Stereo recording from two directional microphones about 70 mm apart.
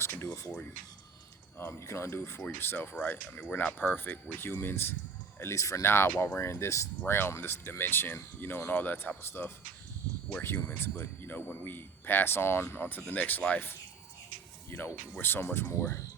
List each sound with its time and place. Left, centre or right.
0.0 s a man's voice: left
1.5 s a man's voice: left